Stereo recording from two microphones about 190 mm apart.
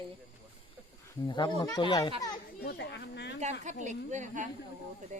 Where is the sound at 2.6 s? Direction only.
60° left (ahead or behind).